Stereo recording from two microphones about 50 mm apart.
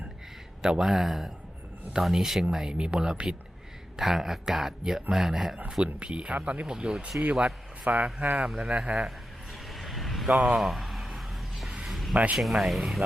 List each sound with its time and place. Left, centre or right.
0.6 s speech: centre
5.7 s speech: centre
9.0 s a sound: centre
10.2 s speech: centre
10.6 s a sound: centre
12.1 s speech: right
12.4 s speech: centre